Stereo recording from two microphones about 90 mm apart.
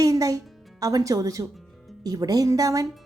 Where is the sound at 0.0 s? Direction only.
40° right (ahead or behind).